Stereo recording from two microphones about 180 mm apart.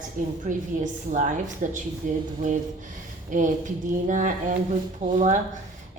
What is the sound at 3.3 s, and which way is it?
A woman's voice, 45° right (ahead or behind).